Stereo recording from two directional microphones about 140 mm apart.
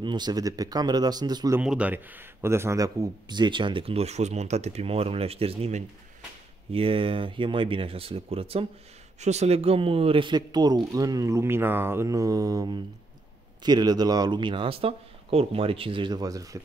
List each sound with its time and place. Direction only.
0.0 s speech: 30° right (ahead or behind)
1.6 s speech: 10° right (ahead or behind); by 5.9 s 50° right (ahead or behind)
6.7 s speech: 40° right (ahead or behind); by 16.5 s 25° right (ahead or behind)